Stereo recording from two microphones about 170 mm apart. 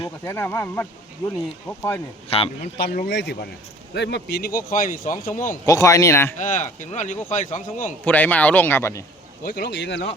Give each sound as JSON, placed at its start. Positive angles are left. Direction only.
{"t": 0.3, "sound": "speech", "side_deg": 15}
{"t": 2.3, "sound": "a man's voice", "side_deg": 35}
{"t": 2.7, "sound": "speech", "side_deg": 75}
{"t": 3.1, "sound": "speech", "side_deg": 90}
{"t": 4.7, "sound": "speech", "side_deg": 55}
{"t": 5.5, "sound": "speech", "side_deg": 20}
{"t": 6.3, "sound": "speech", "side_deg": 50}
{"t": 8.0, "sound": "speech", "side_deg": 10}
{"t": 9.4, "sound": "speech", "side_deg": 60}